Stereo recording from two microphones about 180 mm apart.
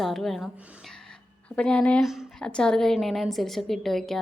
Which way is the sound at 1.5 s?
5° left (ahead or behind).